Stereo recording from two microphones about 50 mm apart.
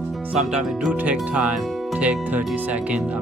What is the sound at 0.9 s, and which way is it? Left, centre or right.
Speech, right.